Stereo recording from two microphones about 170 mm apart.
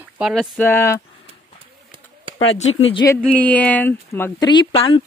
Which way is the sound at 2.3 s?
35° left (ahead or behind).